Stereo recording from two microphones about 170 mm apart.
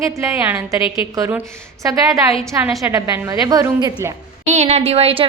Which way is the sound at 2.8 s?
20° right (ahead or behind).